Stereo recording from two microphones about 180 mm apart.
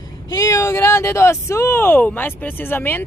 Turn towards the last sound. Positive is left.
turn(degrees=10)  # may be behind; listen again after turning